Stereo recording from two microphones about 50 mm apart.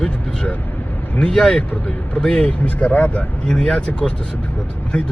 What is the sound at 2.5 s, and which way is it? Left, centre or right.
Speech, left.